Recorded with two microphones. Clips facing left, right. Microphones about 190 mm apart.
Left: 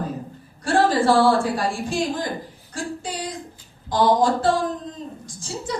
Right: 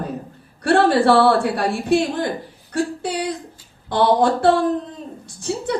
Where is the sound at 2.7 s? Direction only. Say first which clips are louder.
Right 7 dB; 65° right (ahead or behind).